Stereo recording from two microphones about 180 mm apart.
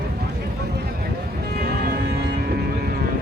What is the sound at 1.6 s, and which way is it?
Music, 65° right (ahead or behind).